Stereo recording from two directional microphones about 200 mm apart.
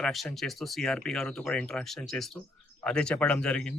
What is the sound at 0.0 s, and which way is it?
A man's voice, centre (ahead or behind).